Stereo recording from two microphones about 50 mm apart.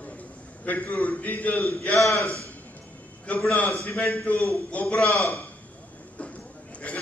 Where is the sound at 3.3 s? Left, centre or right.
Left.